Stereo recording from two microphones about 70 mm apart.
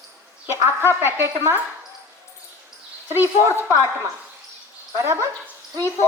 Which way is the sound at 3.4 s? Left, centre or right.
Right.